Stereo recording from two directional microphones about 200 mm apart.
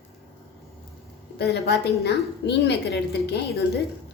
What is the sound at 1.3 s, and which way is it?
A woman's voice, 55° left (ahead or behind).